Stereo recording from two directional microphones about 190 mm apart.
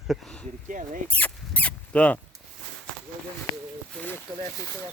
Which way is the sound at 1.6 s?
5° left (ahead or behind).